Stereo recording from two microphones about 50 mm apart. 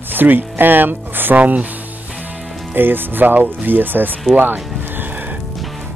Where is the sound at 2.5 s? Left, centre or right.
Centre.